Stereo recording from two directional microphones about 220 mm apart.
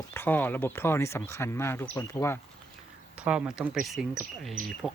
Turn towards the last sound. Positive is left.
turn(degrees=-40)  # may be behind; listen again after turning